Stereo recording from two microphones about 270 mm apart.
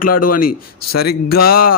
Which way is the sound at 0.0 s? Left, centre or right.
Left.